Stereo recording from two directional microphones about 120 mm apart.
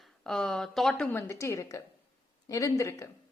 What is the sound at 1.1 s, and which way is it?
A woman's voice, 20° left (ahead or behind).